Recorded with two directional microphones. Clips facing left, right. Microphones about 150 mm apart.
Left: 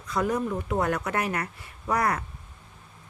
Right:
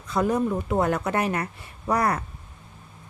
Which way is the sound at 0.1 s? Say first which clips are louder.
Right 3 dB; 25° right (ahead or behind).